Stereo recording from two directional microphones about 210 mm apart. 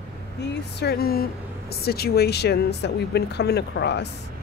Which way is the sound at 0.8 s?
50° left (ahead or behind).